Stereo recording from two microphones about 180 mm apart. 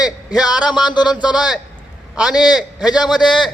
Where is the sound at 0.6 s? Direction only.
25° left (ahead or behind).